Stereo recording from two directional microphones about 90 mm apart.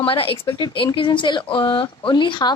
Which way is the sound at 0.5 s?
65° left (ahead or behind).